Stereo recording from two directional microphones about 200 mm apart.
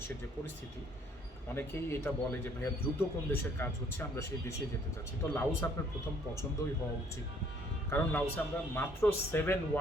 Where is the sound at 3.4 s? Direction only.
10° left (ahead or behind).